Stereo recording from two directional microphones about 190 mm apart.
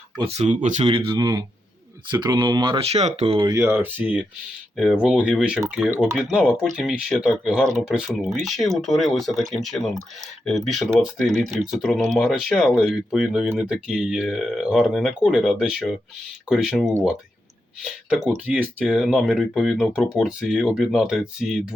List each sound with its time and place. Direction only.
0.2 s speech: 35° right (ahead or behind)
0.9 s speech: 25° right (ahead or behind)
3.5 s speech: 15° right (ahead or behind)